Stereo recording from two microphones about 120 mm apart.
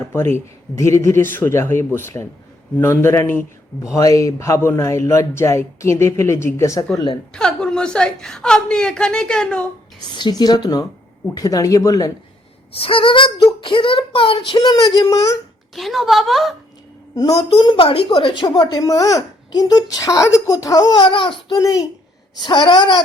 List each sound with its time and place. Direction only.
0.0 s a man's voice: 20° left (ahead or behind)
6.9 s speech: 35° left (ahead or behind)
7.3 s a woman's voice: 5° left (ahead or behind)
10.1 s a man's voice: 40° left (ahead or behind)
12.7 s speech: 50° left (ahead or behind); by 15.4 s 30° left (ahead or behind)
15.7 s a woman's voice: centre (ahead or behind)
17.2 s a man's voice: 30° left (ahead or behind)
17.5 s speech: 45° left (ahead or behind)
21.1 s speech: 45° left (ahead or behind)
21.6 s a man's voice: 30° left (ahead or behind)
22.4 s speech: 40° left (ahead or behind)